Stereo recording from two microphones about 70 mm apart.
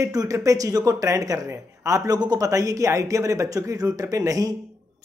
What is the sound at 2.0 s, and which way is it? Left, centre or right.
Speech, right.